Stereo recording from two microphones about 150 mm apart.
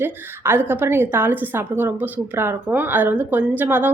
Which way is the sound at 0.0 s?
15° right (ahead or behind).